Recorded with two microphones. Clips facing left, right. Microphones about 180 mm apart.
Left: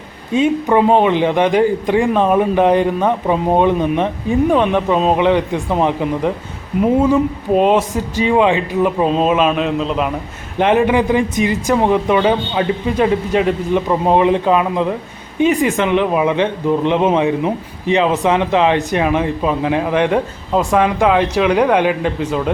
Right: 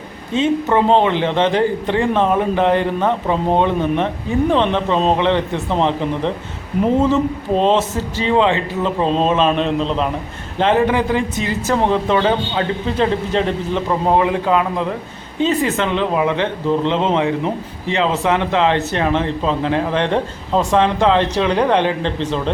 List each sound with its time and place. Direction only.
0.3 s speech: 10° left (ahead or behind)
10.6 s speech: 15° left (ahead or behind)